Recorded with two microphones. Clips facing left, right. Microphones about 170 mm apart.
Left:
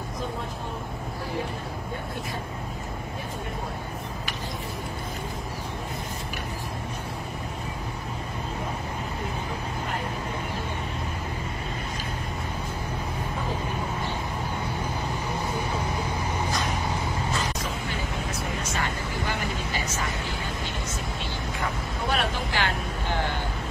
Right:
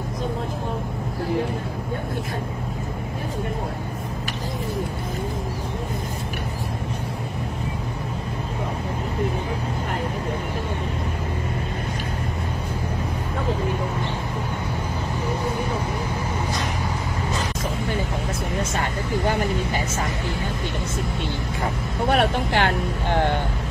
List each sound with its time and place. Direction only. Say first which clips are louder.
18.7 s vehicle: right 5 dB; 50° right (ahead or behind)
22.1 s vehicle: right 7 dB; 60° right (ahead or behind)